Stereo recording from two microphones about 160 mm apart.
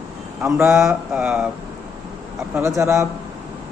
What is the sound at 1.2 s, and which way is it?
Speech, 5° right (ahead or behind).